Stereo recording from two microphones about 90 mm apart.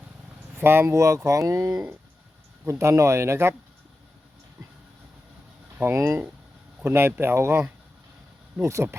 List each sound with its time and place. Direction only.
0.5 s speech: 25° right (ahead or behind)
5.8 s speech: 30° right (ahead or behind)
8.6 s speech: 30° right (ahead or behind)